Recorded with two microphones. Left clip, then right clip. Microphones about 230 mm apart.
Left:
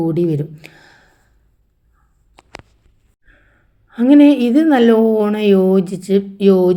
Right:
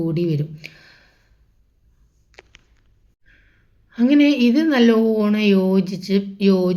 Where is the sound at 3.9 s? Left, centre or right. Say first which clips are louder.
Left 6 dB; centre.